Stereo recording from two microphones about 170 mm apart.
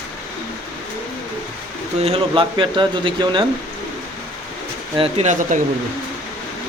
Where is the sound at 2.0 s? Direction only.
35° right (ahead or behind).